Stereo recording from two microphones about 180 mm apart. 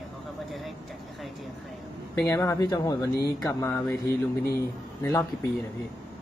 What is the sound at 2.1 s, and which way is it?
Speech, 15° left (ahead or behind).